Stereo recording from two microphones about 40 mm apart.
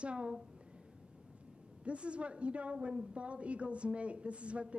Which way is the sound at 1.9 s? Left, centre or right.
Right.